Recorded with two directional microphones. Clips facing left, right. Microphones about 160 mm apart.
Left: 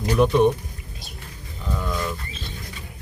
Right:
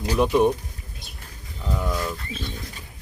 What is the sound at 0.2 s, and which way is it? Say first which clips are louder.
Speech: left 1 dB; 5° right (ahead or behind).